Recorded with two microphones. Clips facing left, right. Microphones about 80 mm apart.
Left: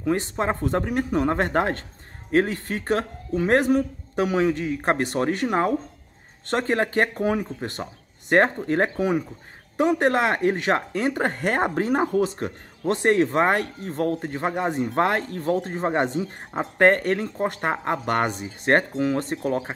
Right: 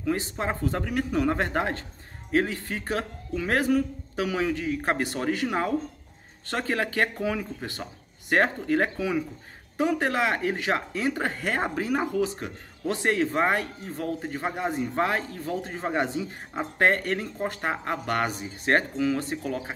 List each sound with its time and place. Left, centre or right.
0.0 s speech: left
3.6 s a man's voice: left
5.2 s speech: left
6.5 s a man's voice: left
9.9 s speech: left
13.3 s speech: left
14.7 s speech: left
15.7 s speech: left